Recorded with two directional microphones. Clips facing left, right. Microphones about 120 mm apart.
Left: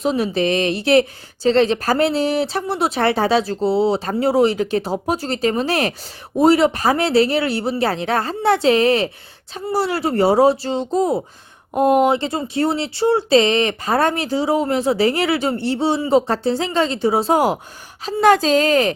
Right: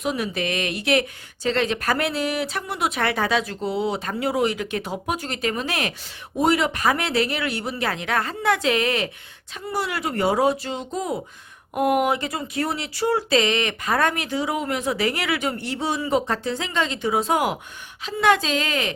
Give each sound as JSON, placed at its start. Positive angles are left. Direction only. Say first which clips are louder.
{"t": 0.0, "sound": "speech", "louder": "left 7 dB", "side_deg": 30}